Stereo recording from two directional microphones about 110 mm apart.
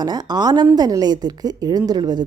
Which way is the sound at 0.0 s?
40° right (ahead or behind).